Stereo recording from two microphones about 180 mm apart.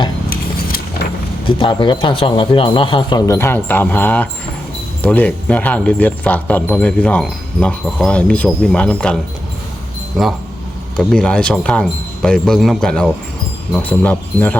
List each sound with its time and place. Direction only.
0.3 s a sound: 55° left (ahead or behind)
1.5 s speech: 25° left (ahead or behind); by 9.1 s 5° left (ahead or behind)
10.2 s speech: centre (ahead or behind)